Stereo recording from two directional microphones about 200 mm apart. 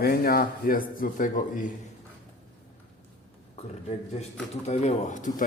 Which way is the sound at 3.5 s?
35° left (ahead or behind).